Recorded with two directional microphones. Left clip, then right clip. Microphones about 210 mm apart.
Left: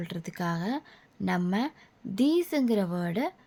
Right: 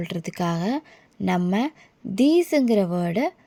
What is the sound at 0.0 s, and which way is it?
A woman's voice, 25° right (ahead or behind).